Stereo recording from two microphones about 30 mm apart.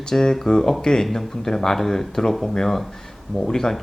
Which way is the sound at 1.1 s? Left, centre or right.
Centre.